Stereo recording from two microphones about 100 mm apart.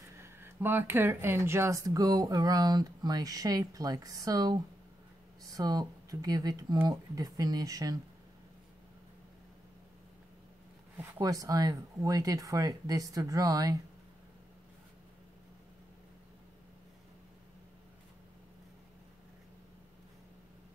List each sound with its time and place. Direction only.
0.2 s speech: 20° right (ahead or behind)
11.1 s speech: 35° right (ahead or behind)